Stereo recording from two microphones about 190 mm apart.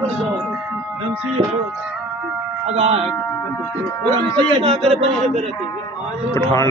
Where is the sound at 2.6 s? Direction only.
30° right (ahead or behind).